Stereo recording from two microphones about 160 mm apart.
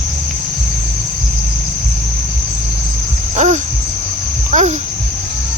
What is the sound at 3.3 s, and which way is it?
Owl, 45° right (ahead or behind).